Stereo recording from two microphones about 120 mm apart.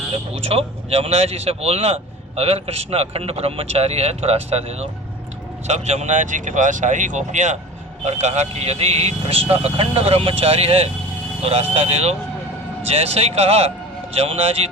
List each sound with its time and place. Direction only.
0.4 s speech: 55° right (ahead or behind); by 7.6 s 85° right
8.0 s speech: 70° right (ahead or behind)